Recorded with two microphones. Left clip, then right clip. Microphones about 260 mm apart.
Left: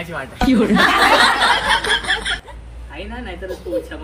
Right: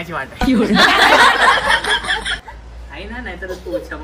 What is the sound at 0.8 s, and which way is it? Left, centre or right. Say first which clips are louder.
Speech: right 3 dB; right.